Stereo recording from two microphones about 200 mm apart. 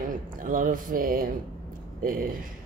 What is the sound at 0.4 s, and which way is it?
Speech, 40° right (ahead or behind).